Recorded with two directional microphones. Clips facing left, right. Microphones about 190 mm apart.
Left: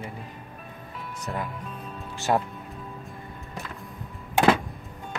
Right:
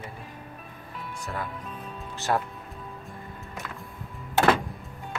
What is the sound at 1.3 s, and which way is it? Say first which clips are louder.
Speech: left 3 dB; 25° left (ahead or behind).